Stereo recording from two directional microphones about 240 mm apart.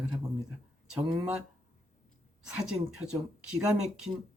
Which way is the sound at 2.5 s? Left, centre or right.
Centre.